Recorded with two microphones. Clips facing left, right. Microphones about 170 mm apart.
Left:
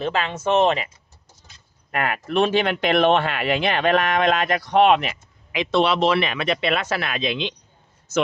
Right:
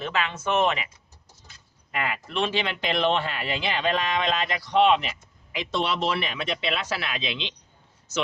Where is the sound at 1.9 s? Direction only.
55° left (ahead or behind).